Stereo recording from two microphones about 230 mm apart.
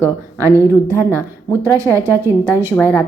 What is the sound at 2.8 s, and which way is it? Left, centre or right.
Speech, centre.